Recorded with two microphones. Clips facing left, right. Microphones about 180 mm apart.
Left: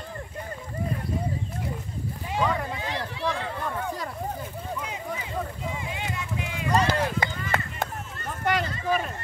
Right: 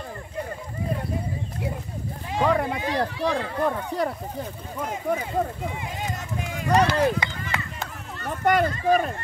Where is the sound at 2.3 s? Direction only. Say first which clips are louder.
Right 5 dB; 60° right (ahead or behind).